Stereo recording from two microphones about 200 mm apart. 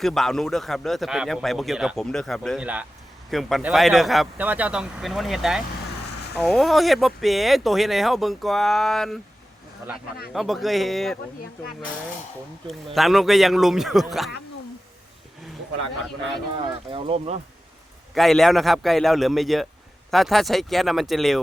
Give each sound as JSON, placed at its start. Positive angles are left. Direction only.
{"t": 0.0, "sound": "a man's voice", "side_deg": 0}
{"t": 10.3, "sound": "a man's voice", "side_deg": 0}
{"t": 12.6, "sound": "a man's voice", "side_deg": 0}
{"t": 16.9, "sound": "speech", "side_deg": -30}
{"t": 18.1, "sound": "a man's voice", "side_deg": 0}